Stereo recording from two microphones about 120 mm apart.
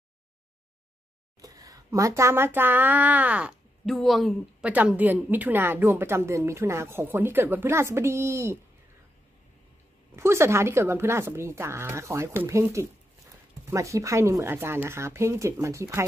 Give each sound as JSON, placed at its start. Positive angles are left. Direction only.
{"t": 1.4, "sound": "speech", "side_deg": -30}
{"t": 3.8, "sound": "speech", "side_deg": 0}
{"t": 4.6, "sound": "a woman's voice", "side_deg": -10}
{"t": 10.1, "sound": "a woman's voice", "side_deg": -20}